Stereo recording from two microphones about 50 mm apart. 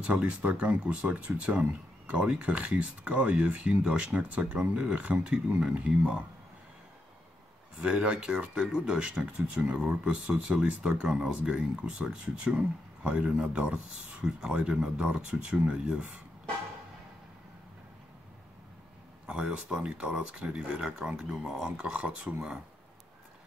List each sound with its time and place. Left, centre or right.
0.0 s speech: right
7.7 s speech: right
10.5 s speech: centre
19.7 s speech: right
21.7 s speech: right